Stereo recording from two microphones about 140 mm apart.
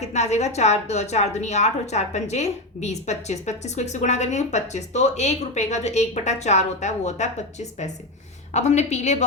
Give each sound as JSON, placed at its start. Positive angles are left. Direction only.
{"t": 0.0, "sound": "a woman's voice", "side_deg": 55}